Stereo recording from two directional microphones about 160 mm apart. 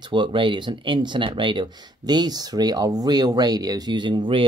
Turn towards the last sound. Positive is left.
turn(degrees=-30)  # may be behind; listen again after turning